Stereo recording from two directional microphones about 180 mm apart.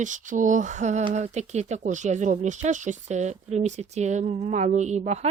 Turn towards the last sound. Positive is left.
turn(degrees=-40)  # may be behind; listen again after turning